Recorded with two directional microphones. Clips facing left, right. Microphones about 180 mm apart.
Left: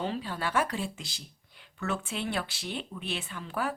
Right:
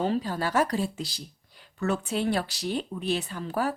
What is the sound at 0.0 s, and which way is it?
Speech, 40° right (ahead or behind).